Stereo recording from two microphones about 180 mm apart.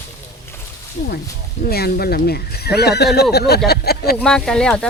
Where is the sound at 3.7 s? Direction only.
60° left (ahead or behind).